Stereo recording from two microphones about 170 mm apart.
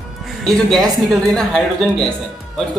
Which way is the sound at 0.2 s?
Centre (ahead or behind).